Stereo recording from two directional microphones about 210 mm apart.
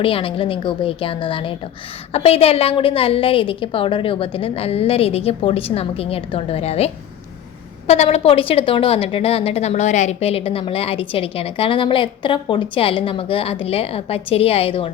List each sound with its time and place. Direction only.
0.0 s a woman's voice: 25° left (ahead or behind)